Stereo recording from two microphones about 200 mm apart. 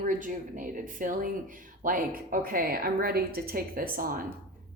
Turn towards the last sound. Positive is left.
turn(degrees=-45)  # may be behind; listen again after turning